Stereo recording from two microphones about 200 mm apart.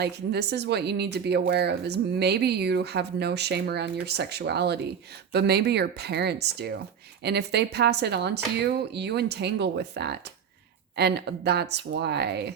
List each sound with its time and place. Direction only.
0.0 s speech: 55° right (ahead or behind)